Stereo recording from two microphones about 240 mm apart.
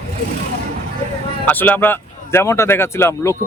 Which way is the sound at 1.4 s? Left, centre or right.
Centre.